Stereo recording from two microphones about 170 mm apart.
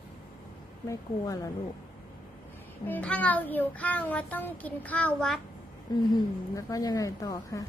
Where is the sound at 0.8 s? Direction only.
20° left (ahead or behind).